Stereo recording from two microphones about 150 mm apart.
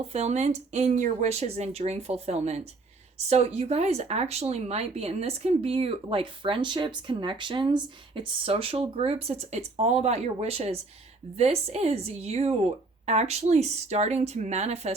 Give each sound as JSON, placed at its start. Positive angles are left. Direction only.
{"t": 0.1, "sound": "speech", "side_deg": -45}